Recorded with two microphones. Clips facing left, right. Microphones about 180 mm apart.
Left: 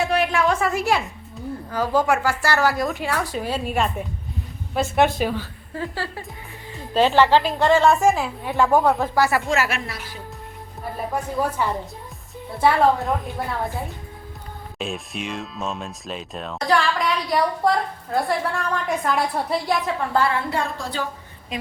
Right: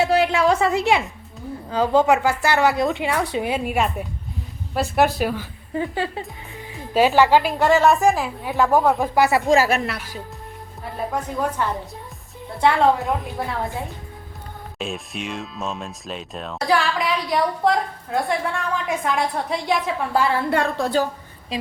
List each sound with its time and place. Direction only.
0.0 s a sound: 30° right (ahead or behind)
1.7 s a woman's voice: 20° right (ahead or behind)
5.7 s speech: 20° right (ahead or behind)
9.1 s speech: 20° right (ahead or behind)
9.5 s speech: 35° right (ahead or behind)
11.1 s a woman's voice: 10° left (ahead or behind)
14.8 s speech: centre (ahead or behind)
20.5 s speech: 60° right (ahead or behind)